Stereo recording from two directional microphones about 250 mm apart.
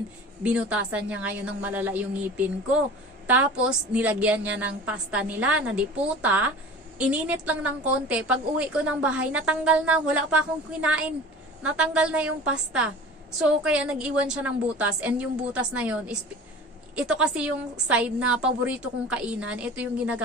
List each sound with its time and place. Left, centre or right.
0.4 s a woman's voice: centre